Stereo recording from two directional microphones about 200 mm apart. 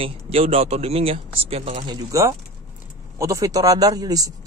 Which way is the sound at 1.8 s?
15° right (ahead or behind).